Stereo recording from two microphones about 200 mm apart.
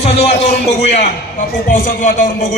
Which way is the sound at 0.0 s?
30° left (ahead or behind).